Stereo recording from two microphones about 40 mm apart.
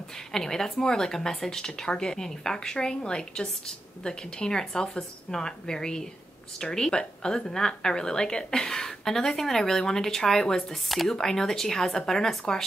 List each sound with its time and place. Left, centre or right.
0.3 s a woman's voice: centre